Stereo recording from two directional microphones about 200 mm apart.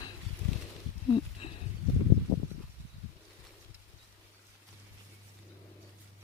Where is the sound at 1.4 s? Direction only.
30° left (ahead or behind).